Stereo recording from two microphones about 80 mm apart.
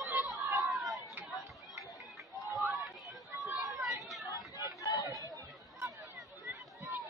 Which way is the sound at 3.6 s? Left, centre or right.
Centre.